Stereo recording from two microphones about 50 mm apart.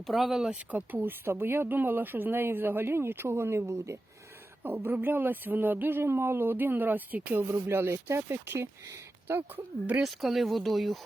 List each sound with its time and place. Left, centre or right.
0.1 s speech: centre
0.7 s speech: right
1.2 s speech: right
4.6 s speech: right
6.0 s speech: right
7.4 s speech: right
10.0 s speech: centre